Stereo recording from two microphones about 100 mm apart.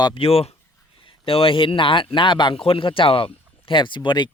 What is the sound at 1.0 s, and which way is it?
A man's voice, 65° left (ahead or behind).